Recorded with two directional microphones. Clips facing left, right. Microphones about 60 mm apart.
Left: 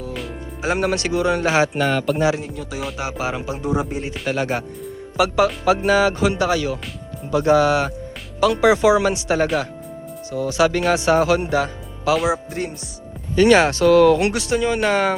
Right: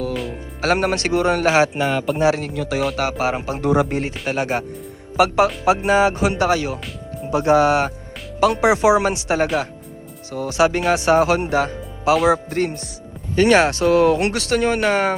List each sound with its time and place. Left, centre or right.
0.1 s music: centre
0.6 s speech: right
1.7 s music: centre
2.5 s speech: right
3.0 s speech: right
3.6 s speech: right
4.3 s speech: right
10.6 s speech: right
12.3 s music: right
13.3 s speech: right
14.4 s music: right